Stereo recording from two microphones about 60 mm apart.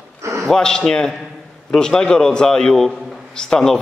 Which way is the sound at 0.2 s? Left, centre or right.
Right.